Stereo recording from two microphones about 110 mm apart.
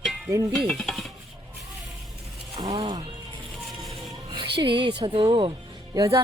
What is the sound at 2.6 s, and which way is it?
Music, 40° right (ahead or behind).